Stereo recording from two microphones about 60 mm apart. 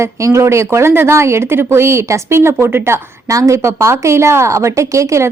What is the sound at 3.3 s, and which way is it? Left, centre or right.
A woman's voice, right.